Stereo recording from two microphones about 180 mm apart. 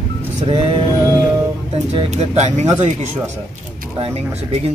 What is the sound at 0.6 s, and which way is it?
Male singing, 25° right (ahead or behind).